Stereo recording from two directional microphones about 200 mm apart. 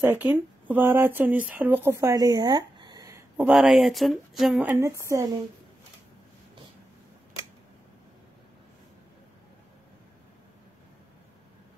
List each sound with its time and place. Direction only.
0.0 s speech: 10° right (ahead or behind)